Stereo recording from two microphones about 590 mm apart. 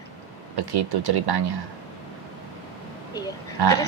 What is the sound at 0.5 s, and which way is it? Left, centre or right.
Speech, right.